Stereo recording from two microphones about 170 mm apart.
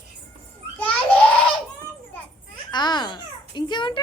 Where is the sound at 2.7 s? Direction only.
25° left (ahead or behind).